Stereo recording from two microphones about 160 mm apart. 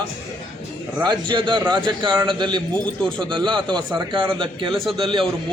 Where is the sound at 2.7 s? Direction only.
5° left (ahead or behind).